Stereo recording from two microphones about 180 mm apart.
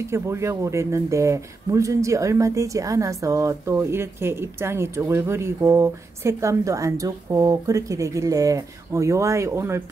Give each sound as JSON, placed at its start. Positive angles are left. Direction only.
{"t": 0.0, "sound": "speech", "side_deg": -15}